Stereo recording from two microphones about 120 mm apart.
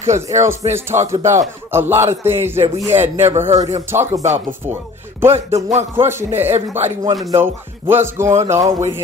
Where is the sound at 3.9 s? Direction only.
20° right (ahead or behind).